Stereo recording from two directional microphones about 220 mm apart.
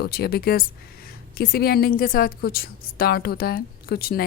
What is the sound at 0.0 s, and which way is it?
Speech, 45° left (ahead or behind).